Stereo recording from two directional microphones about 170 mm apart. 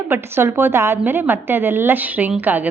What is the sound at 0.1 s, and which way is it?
A woman's voice, 15° right (ahead or behind).